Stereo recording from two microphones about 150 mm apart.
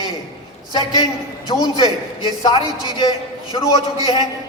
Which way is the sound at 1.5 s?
30° left (ahead or behind).